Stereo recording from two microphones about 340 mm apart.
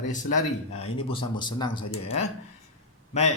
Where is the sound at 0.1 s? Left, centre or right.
Left.